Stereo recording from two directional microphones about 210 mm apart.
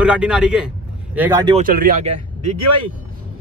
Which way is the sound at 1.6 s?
45° right (ahead or behind).